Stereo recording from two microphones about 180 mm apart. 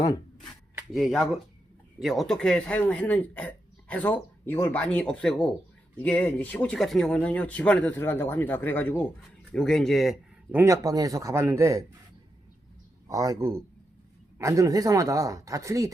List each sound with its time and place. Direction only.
0.9 s speech: centre (ahead or behind)
10.5 s speech: 15° right (ahead or behind)
13.1 s speech: 20° right (ahead or behind)